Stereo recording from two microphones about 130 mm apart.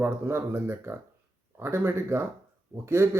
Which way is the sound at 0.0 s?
20° right (ahead or behind).